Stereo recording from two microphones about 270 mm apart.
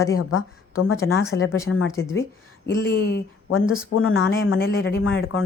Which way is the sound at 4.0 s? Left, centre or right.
Left.